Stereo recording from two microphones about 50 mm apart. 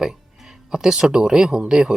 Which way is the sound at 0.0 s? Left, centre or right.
Centre.